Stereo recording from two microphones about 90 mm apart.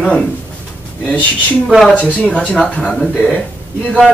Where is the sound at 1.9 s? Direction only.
15° left (ahead or behind).